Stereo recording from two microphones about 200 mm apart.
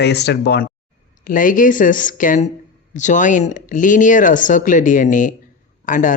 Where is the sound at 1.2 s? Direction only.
40° left (ahead or behind).